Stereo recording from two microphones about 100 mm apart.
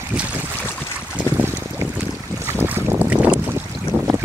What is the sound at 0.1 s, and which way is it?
Boat, 15° right (ahead or behind).